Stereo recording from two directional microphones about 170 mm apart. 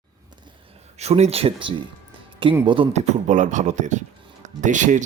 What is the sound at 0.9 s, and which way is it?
Speech, 40° right (ahead or behind).